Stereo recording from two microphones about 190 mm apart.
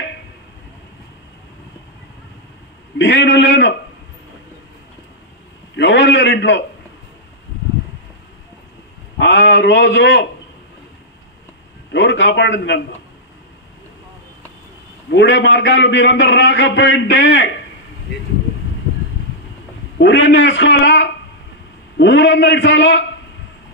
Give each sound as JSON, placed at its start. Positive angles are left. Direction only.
{"t": 3.0, "sound": "a man's voice", "side_deg": 65}
{"t": 5.8, "sound": "a man's voice", "side_deg": 70}
{"t": 9.2, "sound": "a man's voice", "side_deg": 65}
{"t": 11.9, "sound": "a man's voice", "side_deg": 70}
{"t": 15.0, "sound": "a man's voice", "side_deg": 65}
{"t": 20.0, "sound": "a man's voice", "side_deg": 70}